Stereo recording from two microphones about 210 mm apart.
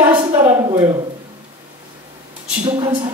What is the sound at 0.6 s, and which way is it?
Speech, 20° right (ahead or behind).